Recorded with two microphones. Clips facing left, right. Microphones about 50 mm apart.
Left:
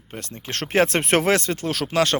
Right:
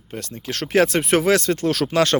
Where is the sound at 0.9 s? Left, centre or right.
Left.